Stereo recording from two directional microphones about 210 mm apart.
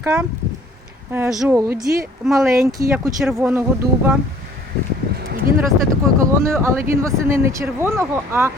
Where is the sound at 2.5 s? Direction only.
15° right (ahead or behind).